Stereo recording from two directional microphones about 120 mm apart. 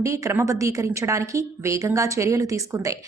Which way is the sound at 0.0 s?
25° right (ahead or behind).